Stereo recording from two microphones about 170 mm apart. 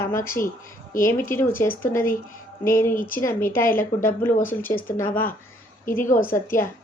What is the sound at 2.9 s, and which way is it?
Speech, 55° left (ahead or behind).